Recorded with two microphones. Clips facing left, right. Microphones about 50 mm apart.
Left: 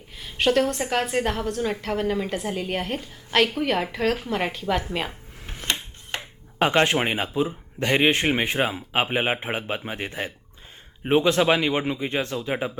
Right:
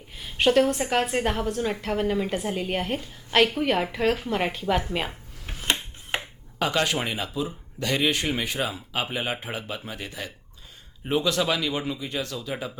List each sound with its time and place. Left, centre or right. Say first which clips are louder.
0.2 s a woman's voice: right 1 dB; centre
4.3 s a sound: even; centre
6.6 s speech: left 5 dB; left